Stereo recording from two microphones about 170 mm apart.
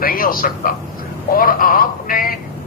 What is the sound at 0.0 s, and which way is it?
Speech, 55° left (ahead or behind).